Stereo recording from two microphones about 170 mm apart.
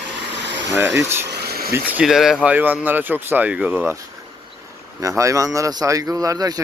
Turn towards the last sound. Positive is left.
turn(degrees=-20)  # may be behind; listen again after turning